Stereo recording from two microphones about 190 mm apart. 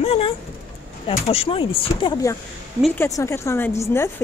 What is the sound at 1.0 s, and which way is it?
Speech, 30° left (ahead or behind).